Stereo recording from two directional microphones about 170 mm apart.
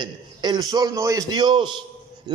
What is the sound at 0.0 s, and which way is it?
A man's voice, 25° right (ahead or behind).